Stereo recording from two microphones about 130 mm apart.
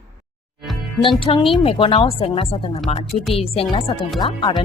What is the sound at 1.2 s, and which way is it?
A woman's voice, 40° left (ahead or behind).